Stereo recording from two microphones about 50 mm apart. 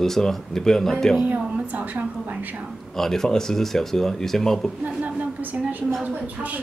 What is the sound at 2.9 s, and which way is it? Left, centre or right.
Speech, centre.